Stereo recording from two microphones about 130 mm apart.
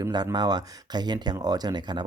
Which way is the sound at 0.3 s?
30° right (ahead or behind).